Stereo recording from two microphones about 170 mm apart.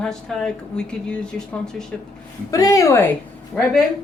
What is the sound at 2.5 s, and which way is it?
Speech, 20° left (ahead or behind).